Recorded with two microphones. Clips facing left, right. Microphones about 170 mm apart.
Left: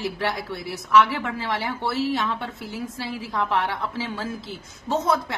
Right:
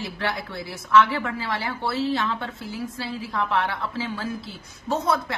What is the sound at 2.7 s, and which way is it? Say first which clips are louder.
A woman's voice: right 1 dB; 20° left (ahead or behind).